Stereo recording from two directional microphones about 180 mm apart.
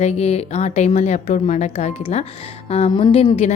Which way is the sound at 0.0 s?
35° left (ahead or behind).